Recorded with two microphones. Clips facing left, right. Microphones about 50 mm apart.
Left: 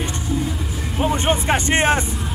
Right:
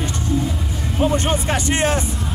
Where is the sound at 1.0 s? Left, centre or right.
Centre.